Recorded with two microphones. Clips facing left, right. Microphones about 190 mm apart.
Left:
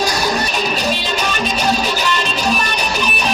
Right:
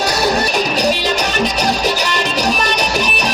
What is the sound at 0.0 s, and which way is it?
Music, 65° right (ahead or behind).